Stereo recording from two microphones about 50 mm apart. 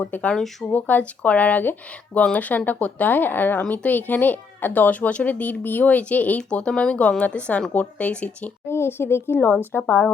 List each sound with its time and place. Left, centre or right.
0.1 s speech: left
6.5 s speech: left
8.6 s speech: left